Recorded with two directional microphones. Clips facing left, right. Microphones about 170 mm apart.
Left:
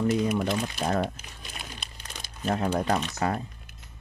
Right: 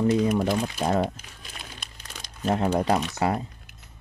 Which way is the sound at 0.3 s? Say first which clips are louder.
Right 3 dB; 35° right (ahead or behind).